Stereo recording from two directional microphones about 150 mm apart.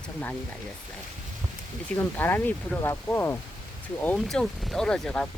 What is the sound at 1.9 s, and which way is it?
Speech, 10° left (ahead or behind).